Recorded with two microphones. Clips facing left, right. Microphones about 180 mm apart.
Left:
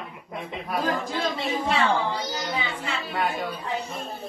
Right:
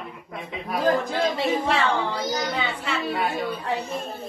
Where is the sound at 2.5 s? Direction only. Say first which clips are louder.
Right 2 dB; 65° right (ahead or behind).